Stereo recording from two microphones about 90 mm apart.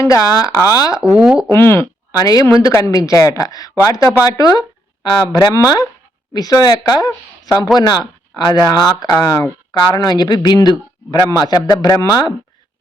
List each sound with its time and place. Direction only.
0.0 s a woman's voice: 40° left (ahead or behind)
1.2 s speech: 10° right (ahead or behind)
1.5 s speech: 30° left (ahead or behind)
2.1 s a woman's voice: 45° left (ahead or behind)
4.3 s speech: 45° left (ahead or behind)
7.8 s speech: 50° left (ahead or behind)
9.0 s a woman's voice: 40° left (ahead or behind)
9.7 s speech: 50° left (ahead or behind)